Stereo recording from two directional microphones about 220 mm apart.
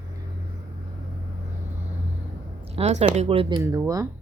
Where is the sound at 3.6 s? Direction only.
15° right (ahead or behind).